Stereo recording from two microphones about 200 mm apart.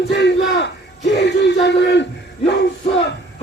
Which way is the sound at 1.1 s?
60° left (ahead or behind).